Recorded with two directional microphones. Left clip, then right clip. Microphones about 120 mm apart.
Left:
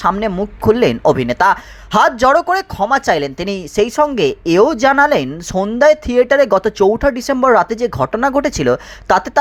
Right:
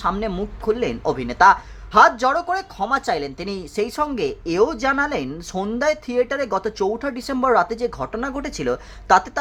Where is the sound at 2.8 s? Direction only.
35° left (ahead or behind).